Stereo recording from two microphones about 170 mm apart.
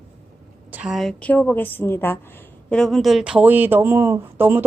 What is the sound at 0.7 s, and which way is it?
Speech, 5° right (ahead or behind).